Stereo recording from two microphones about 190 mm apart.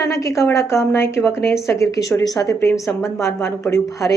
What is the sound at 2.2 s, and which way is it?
A woman's voice, 15° left (ahead or behind).